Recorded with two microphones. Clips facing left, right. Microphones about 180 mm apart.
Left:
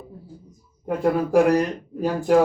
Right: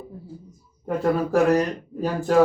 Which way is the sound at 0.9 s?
15° left (ahead or behind).